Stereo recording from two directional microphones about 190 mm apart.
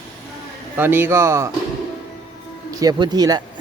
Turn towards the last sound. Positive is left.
turn(degrees=-20)  # may be behind; listen again after turning